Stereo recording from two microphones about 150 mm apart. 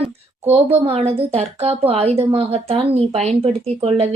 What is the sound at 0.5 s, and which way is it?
A woman's voice, 35° right (ahead or behind).